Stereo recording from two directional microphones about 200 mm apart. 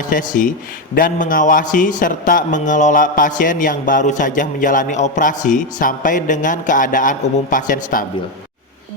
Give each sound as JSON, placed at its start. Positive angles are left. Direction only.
{"t": 0.1, "sound": "a man's voice", "side_deg": 40}